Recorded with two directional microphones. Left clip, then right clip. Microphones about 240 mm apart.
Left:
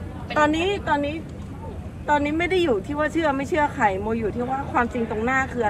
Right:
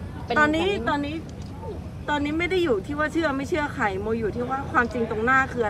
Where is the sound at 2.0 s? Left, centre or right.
Centre.